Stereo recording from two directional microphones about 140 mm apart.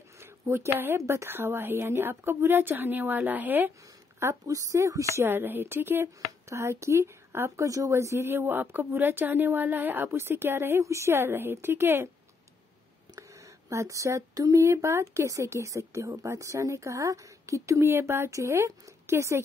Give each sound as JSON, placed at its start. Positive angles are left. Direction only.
{"t": 0.2, "sound": "speech", "side_deg": -20}
{"t": 13.7, "sound": "speech", "side_deg": -20}